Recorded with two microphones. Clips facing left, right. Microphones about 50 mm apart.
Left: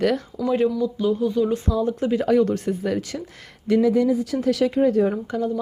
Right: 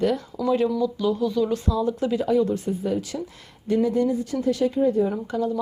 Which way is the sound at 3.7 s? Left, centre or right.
Left.